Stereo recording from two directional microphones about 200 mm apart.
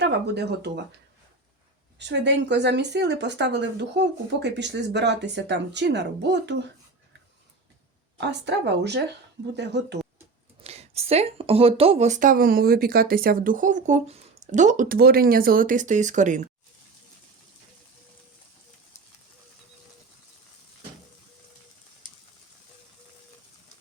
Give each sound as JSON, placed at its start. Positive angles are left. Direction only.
{"t": 0.0, "sound": "speech", "side_deg": -55}
{"t": 2.0, "sound": "speech", "side_deg": -60}
{"t": 8.2, "sound": "speech", "side_deg": -60}
{"t": 10.6, "sound": "speech", "side_deg": -30}